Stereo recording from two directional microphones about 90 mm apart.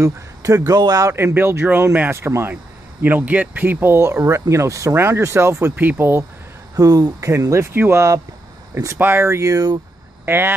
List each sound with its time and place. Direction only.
0.0 s speech: 40° right (ahead or behind)
1.1 s speech: 25° right (ahead or behind)
6.7 s speech: 45° right (ahead or behind)
10.2 s speech: 25° right (ahead or behind)